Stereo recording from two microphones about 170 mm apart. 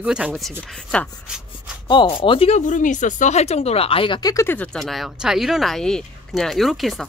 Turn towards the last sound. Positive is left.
turn(degrees=0)  # may be behind; listen again after turning